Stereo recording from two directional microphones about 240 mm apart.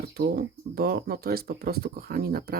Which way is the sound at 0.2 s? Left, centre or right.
Right.